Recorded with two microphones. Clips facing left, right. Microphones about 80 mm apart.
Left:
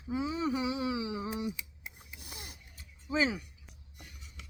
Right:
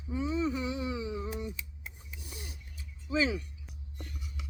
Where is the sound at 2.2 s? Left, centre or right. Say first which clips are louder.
Right 1 dB; left.